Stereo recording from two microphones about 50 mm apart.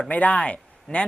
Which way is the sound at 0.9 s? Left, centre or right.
Centre.